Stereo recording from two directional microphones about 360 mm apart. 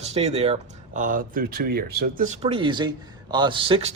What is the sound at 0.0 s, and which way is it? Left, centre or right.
Speech, centre.